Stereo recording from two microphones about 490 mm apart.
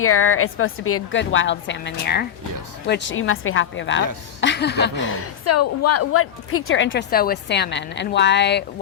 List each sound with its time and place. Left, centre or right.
0.0 s a woman's voice: left